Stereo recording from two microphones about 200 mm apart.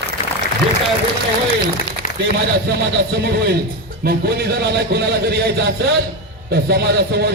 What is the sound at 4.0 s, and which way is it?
A man's voice, 55° right (ahead or behind).